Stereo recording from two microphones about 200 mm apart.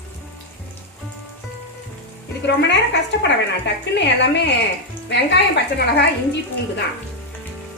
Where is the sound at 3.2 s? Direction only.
60° left (ahead or behind).